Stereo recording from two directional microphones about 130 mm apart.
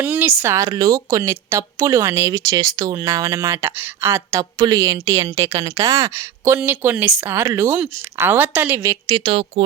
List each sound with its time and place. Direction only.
0.0 s a woman's voice: 15° right (ahead or behind)
9.0 s a woman's voice: 45° right (ahead or behind)